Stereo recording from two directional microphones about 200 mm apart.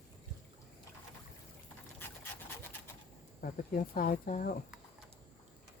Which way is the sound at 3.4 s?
45° left (ahead or behind).